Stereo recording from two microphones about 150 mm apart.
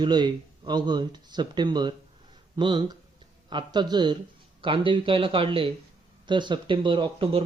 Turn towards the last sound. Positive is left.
turn(degrees=-40)  # may be behind; listen again after turning